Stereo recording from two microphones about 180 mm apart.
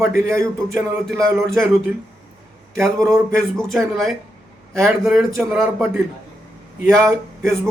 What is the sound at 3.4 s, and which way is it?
Speech, 5° left (ahead or behind).